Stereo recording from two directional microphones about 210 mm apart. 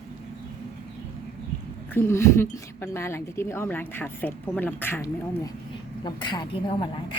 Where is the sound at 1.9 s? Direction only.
10° left (ahead or behind).